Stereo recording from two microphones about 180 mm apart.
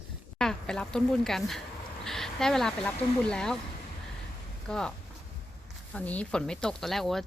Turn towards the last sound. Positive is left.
turn(degrees=0)  # may be behind; listen again after turning